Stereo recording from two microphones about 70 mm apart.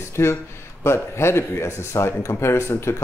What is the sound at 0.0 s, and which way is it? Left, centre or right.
Speech, left.